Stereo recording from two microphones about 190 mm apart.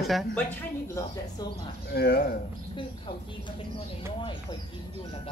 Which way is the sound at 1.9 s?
55° left (ahead or behind).